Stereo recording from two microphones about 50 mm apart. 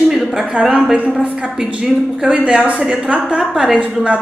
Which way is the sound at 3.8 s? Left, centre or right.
Right.